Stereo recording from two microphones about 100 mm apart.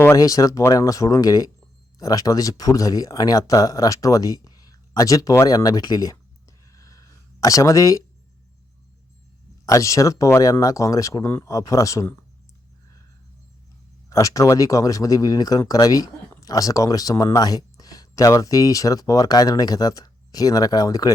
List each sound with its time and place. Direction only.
0.2 s speech: 35° left (ahead or behind)
6.7 s a sound: 35° left (ahead or behind)
9.6 s speech: 35° left (ahead or behind)
14.1 s speech: 35° left (ahead or behind)